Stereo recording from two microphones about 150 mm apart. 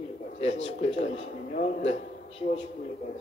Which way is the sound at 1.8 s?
50° left (ahead or behind).